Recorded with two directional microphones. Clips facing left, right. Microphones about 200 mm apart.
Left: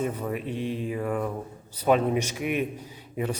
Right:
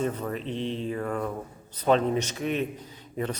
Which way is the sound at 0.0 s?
10° left (ahead or behind).